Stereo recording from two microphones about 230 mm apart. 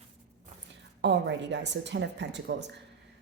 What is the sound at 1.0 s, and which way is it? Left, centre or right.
Speech, right.